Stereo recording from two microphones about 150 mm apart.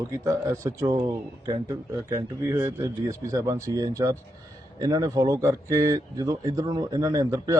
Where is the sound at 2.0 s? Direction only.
15° right (ahead or behind).